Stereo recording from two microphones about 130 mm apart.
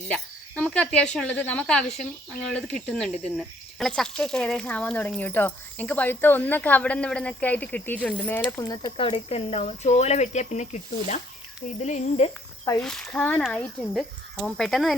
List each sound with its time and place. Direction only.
0.1 s speech: 10° left (ahead or behind)
8.6 s speech: 30° left (ahead or behind)
9.0 s speech: 40° left (ahead or behind); by 12.3 s 60° left (ahead or behind)
12.8 s speech: 5° left (ahead or behind)